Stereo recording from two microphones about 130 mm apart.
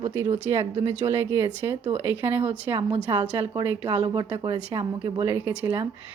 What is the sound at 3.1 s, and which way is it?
A woman's voice, 25° right (ahead or behind).